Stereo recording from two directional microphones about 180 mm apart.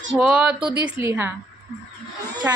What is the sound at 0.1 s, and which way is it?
Speech, 5° right (ahead or behind).